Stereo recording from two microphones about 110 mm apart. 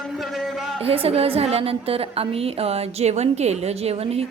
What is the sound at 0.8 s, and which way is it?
A woman's voice, 60° right (ahead or behind).